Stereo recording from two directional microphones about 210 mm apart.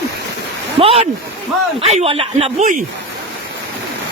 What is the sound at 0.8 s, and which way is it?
Speech, 30° right (ahead or behind).